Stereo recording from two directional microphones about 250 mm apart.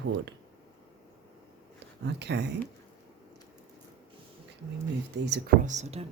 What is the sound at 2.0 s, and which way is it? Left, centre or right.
Speech, right.